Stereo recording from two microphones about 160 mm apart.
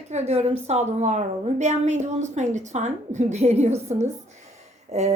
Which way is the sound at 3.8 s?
45° right (ahead or behind).